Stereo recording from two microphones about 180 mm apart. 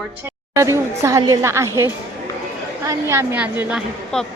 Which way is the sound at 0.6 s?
15° right (ahead or behind).